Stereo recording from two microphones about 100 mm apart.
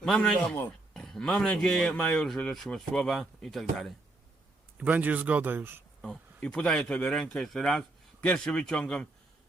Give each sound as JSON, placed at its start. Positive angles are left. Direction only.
{"t": 0.0, "sound": "speech", "side_deg": 5}
{"t": 0.3, "sound": "speech", "side_deg": 20}
{"t": 0.9, "sound": "speech", "side_deg": 5}
{"t": 4.8, "sound": "speech", "side_deg": -15}
{"t": 6.0, "sound": "speech", "side_deg": 10}